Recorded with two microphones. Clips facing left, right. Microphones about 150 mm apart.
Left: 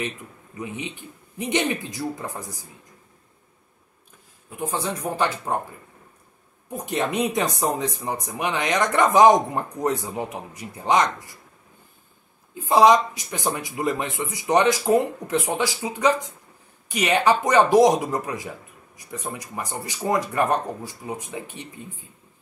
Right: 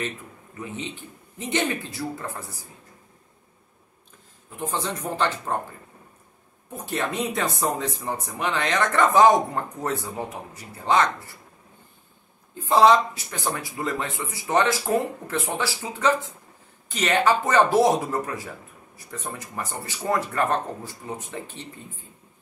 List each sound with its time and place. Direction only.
0.6 s speech: 15° left (ahead or behind)
4.5 s speech: 10° left (ahead or behind)
6.7 s speech: 15° left (ahead or behind)
12.5 s speech: 10° left (ahead or behind)